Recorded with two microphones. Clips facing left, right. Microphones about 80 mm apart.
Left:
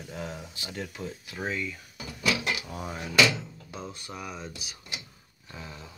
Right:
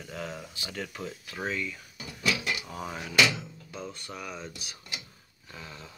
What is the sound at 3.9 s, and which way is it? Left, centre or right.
Speech, centre.